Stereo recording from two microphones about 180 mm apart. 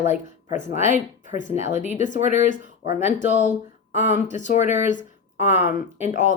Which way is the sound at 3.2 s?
45° left (ahead or behind).